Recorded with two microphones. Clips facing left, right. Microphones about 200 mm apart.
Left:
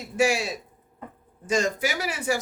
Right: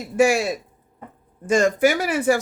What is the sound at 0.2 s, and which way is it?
Speech, 50° right (ahead or behind).